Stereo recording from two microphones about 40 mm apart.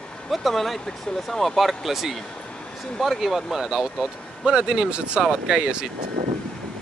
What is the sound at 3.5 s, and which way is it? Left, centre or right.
Speech, centre.